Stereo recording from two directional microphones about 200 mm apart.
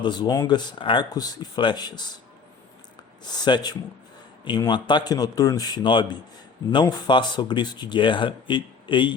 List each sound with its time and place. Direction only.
0.0 s speech: 20° left (ahead or behind)
3.4 s speech: 20° left (ahead or behind)